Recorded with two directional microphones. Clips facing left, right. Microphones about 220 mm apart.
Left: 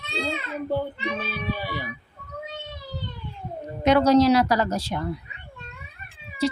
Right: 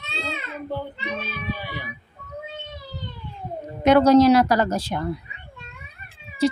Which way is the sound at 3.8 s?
55° right (ahead or behind).